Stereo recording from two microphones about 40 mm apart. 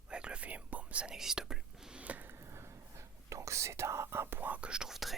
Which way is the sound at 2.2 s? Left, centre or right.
Right.